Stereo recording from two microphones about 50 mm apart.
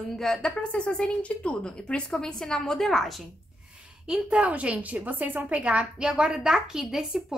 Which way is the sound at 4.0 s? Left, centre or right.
Centre.